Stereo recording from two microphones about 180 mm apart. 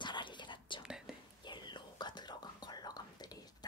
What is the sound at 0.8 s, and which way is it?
Whispering, 5° right (ahead or behind).